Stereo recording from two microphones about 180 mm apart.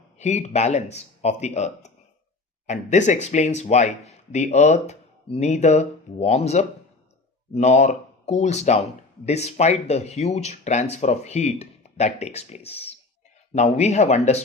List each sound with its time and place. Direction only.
0.2 s speech: 40° left (ahead or behind)